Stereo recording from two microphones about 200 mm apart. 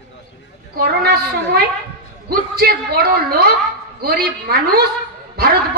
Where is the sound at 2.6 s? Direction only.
50° right (ahead or behind).